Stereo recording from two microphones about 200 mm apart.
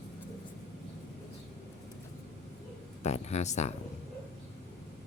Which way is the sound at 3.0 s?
35° left (ahead or behind).